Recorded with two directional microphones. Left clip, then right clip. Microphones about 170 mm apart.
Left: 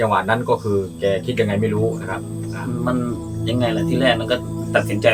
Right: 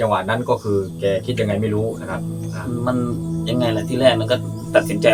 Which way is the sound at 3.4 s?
15° right (ahead or behind).